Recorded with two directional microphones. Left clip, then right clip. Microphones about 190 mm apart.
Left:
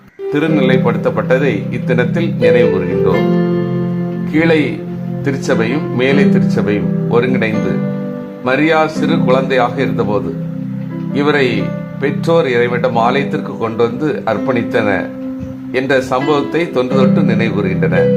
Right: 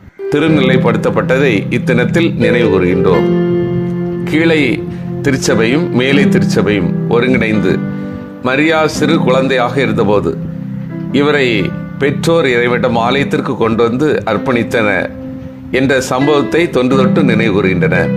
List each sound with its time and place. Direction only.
0.3 s speech: 25° right (ahead or behind)
3.1 s speech: 5° left (ahead or behind)
4.3 s speech: 30° right (ahead or behind)